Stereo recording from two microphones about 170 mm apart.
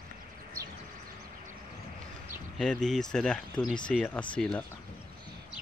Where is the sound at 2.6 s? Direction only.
5° left (ahead or behind).